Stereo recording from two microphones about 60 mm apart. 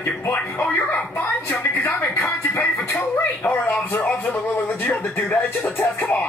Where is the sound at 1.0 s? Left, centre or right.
Left.